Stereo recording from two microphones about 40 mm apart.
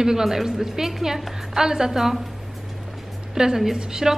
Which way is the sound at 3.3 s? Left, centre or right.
Centre.